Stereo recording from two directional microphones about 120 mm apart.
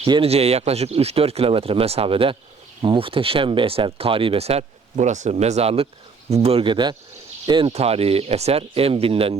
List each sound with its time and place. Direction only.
0.0 s speech: 50° right (ahead or behind)
7.7 s speech: 60° right (ahead or behind)